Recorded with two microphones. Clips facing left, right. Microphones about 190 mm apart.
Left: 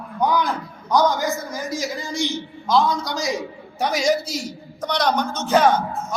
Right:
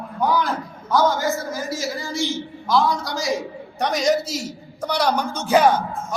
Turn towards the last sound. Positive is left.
turn(degrees=-15)  # may be behind; listen again after turning